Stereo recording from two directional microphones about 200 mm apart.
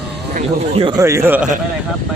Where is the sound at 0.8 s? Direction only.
20° right (ahead or behind).